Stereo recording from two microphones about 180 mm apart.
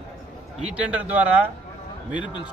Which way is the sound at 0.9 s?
10° right (ahead or behind).